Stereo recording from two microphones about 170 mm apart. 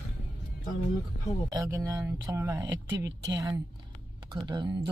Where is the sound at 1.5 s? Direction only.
20° right (ahead or behind).